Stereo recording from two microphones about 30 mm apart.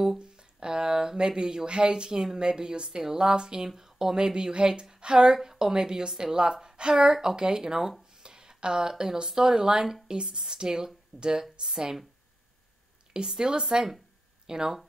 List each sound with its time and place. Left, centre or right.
0.4 s speech: right
13.1 s speech: right
14.4 s a sound: right